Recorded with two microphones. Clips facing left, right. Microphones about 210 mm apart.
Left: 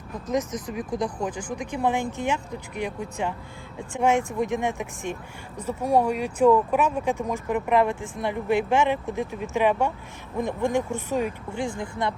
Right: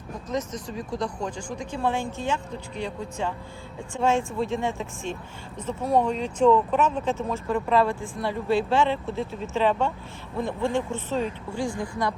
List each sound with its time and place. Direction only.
0.7 s speech: 15° left (ahead or behind)